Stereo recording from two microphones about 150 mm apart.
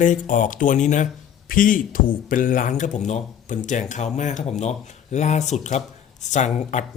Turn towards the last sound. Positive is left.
turn(degrees=50)  # may be behind; listen again after turning